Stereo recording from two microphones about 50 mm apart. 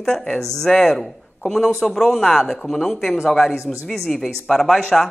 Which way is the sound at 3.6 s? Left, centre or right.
Left.